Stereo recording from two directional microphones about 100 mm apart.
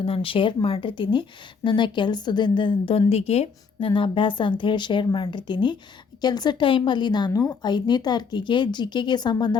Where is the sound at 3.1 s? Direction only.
90° left.